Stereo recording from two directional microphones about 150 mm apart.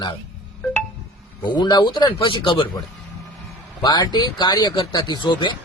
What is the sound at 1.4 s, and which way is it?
Speech, 30° left (ahead or behind).